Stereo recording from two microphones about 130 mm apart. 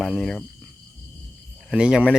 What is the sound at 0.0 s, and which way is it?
Speech, centre (ahead or behind).